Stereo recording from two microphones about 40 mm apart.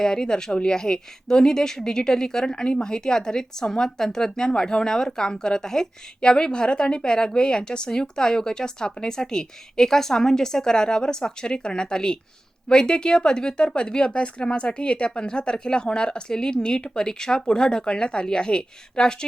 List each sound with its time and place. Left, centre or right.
0.0 s a woman's voice: centre